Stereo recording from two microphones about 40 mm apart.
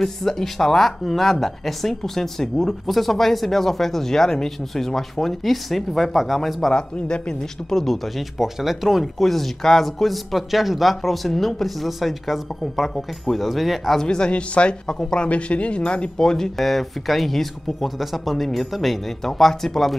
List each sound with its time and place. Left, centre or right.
0.0 s a man's voice: centre
6.7 s speech: left
7.7 s speech: centre
8.4 s speech: centre
9.0 s a man's voice: centre
14.0 s speech: left
15.2 s speech: left
16.2 s speech: centre
16.5 s a man's voice: centre